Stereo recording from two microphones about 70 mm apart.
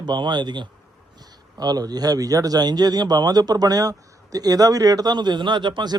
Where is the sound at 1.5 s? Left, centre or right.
Right.